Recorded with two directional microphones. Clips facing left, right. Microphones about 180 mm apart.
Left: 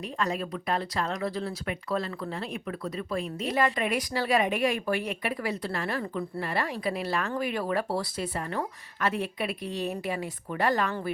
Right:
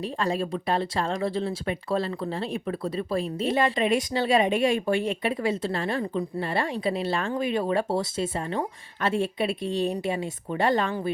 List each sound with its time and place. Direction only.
0.0 s speech: 30° right (ahead or behind)